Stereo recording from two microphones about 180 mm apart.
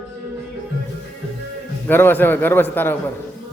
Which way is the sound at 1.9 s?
10° left (ahead or behind).